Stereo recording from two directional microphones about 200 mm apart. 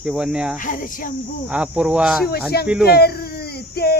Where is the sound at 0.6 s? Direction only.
40° left (ahead or behind).